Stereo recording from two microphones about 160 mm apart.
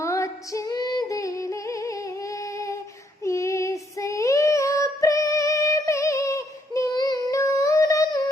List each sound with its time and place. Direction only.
0.0 s female singing: 20° left (ahead or behind)
3.2 s child singing: 20° left (ahead or behind)